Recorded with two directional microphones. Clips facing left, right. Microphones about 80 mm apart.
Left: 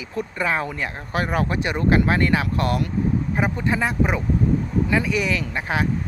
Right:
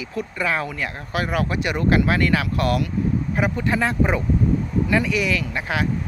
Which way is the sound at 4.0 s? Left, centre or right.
Centre.